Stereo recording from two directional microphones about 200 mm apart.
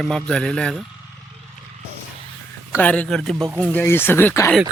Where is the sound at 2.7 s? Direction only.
5° left (ahead or behind).